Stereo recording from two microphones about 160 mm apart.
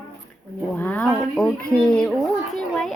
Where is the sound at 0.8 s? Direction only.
10° left (ahead or behind).